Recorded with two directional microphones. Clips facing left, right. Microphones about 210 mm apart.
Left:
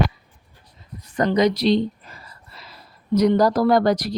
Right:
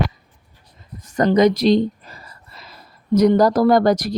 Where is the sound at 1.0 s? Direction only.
45° right (ahead or behind).